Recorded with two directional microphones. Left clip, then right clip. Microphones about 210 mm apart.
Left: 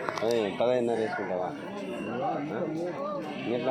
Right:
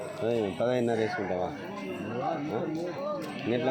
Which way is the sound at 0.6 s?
50° right (ahead or behind).